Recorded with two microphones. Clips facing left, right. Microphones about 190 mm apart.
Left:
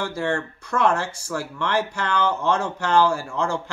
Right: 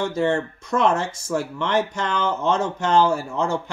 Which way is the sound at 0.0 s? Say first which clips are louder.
Right 4 dB; 20° right (ahead or behind).